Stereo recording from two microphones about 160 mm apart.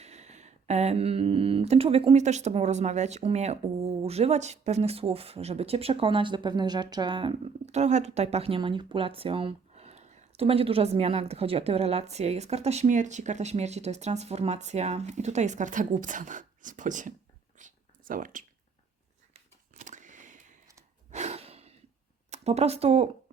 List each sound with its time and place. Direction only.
0.0 s speech: 45° right (ahead or behind)
7.7 s speech: 45° right (ahead or behind)
17.6 s a sound: 55° right (ahead or behind)
21.1 s breathing: 45° right (ahead or behind)
22.3 s speech: 40° right (ahead or behind)